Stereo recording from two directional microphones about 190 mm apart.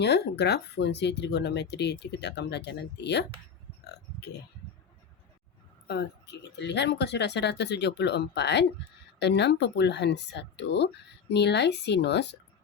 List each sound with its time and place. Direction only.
0.0 s speech: 65° left (ahead or behind)
5.9 s speech: 60° left (ahead or behind)